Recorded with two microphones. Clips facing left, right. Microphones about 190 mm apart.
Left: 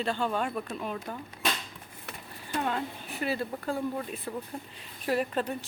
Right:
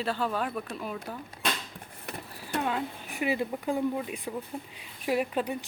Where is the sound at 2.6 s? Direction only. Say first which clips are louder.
Even; 5° right (ahead or behind).